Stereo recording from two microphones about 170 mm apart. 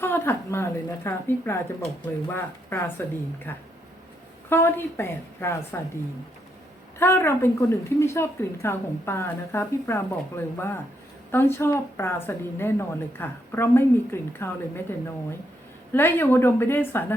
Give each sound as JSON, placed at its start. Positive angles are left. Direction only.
{"t": 0.0, "sound": "speech", "side_deg": 15}
{"t": 4.4, "sound": "speech", "side_deg": 15}
{"t": 7.0, "sound": "speech", "side_deg": 15}